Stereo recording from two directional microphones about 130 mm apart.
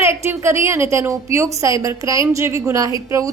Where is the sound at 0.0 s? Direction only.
20° right (ahead or behind).